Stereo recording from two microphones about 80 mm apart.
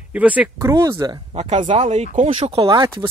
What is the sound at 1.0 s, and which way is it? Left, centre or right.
Speech, right.